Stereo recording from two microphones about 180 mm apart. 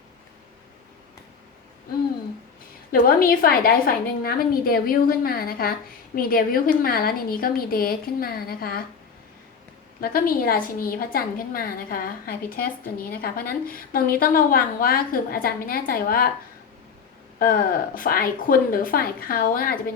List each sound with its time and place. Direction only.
2.9 s a woman's voice: 50° left (ahead or behind)
10.0 s a woman's voice: 55° left (ahead or behind)
17.4 s a woman's voice: 50° left (ahead or behind)